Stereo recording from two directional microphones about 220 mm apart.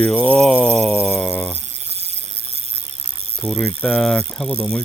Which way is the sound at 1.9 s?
25° right (ahead or behind).